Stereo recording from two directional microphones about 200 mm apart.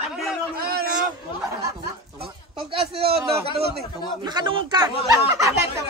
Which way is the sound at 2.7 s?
30° right (ahead or behind).